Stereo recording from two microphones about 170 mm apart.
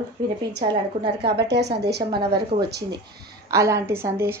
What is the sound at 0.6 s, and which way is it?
Speech, 35° right (ahead or behind).